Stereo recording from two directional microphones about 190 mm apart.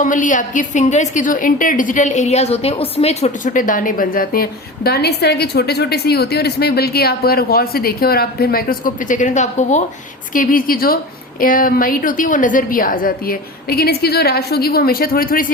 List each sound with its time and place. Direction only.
0.0 s a woman's voice: 40° left (ahead or behind)